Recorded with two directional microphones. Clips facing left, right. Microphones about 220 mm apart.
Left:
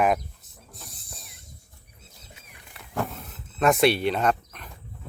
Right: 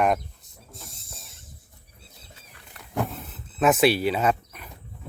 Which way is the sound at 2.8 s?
5° left (ahead or behind).